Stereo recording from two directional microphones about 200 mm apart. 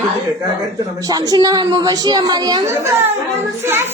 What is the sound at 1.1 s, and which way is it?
A woman's voice, 20° right (ahead or behind).